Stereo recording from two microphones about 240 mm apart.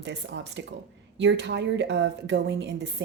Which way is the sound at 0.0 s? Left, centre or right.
Right.